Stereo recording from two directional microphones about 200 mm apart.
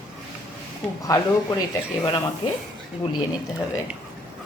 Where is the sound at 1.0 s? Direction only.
15° left (ahead or behind).